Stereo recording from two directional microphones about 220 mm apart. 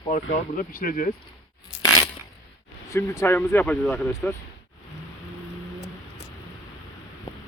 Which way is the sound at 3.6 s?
Centre (ahead or behind).